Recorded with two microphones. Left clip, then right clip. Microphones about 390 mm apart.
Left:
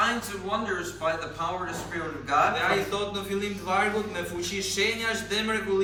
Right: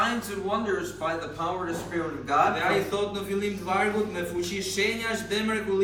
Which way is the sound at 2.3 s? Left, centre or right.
Centre.